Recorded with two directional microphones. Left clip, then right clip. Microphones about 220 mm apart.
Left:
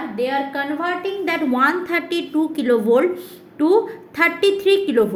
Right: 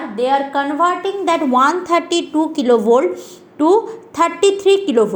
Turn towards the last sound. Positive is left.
turn(degrees=-5)  # may be behind; listen again after turning